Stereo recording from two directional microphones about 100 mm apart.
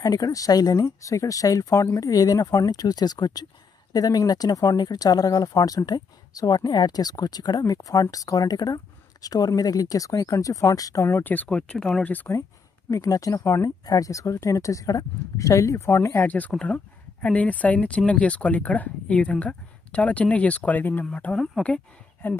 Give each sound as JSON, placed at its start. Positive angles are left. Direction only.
{"t": 0.0, "sound": "speech", "side_deg": 35}
{"t": 11.1, "sound": "speech", "side_deg": 20}
{"t": 11.4, "sound": "speech", "side_deg": 10}
{"t": 12.9, "sound": "speech", "side_deg": 35}
{"t": 16.3, "sound": "speech", "side_deg": 15}